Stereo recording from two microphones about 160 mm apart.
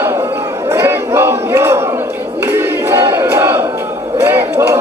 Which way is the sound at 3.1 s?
15° right (ahead or behind).